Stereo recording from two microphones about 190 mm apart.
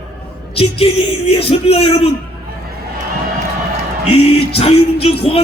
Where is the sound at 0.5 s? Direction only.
30° left (ahead or behind).